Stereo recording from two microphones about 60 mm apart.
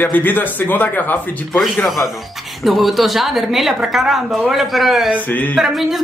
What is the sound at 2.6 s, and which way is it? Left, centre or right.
A woman's voice, centre.